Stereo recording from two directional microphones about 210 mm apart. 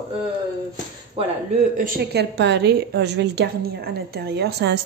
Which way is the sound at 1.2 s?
25° right (ahead or behind).